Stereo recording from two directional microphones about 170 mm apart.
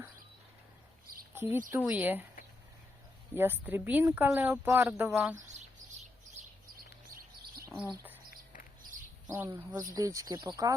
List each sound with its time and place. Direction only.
1.3 s speech: 10° right (ahead or behind)
3.3 s speech: 10° right (ahead or behind)
5.5 s bird: 45° right (ahead or behind)
7.1 s bird: 55° right (ahead or behind)
8.8 s a sound: 50° right (ahead or behind)
9.3 s speech: 15° right (ahead or behind)